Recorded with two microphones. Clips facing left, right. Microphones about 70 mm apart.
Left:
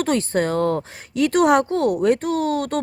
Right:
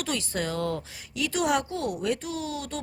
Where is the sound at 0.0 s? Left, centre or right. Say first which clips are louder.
Left 10 dB; left.